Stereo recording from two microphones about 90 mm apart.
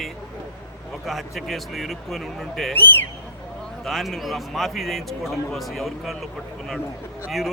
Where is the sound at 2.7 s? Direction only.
20° left (ahead or behind).